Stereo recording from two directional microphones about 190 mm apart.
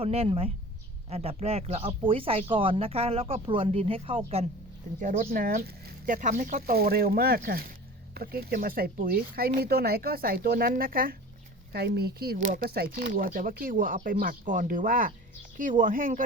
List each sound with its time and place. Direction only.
0.0 s speech: 30° right (ahead or behind)
4.9 s speech: 45° right (ahead or behind)